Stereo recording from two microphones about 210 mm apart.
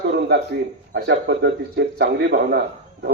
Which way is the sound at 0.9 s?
55° right (ahead or behind).